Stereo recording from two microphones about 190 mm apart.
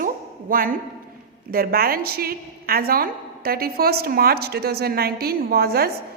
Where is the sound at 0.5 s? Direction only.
50° right (ahead or behind).